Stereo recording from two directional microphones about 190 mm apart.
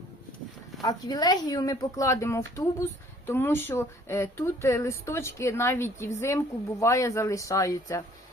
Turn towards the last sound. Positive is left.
turn(degrees=15)  # may be behind; listen again after turning